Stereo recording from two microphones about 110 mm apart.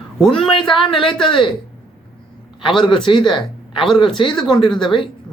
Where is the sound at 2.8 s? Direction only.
50° left (ahead or behind).